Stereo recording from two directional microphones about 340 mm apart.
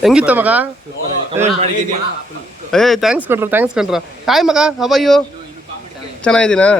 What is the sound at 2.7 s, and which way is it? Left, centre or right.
Speech, centre.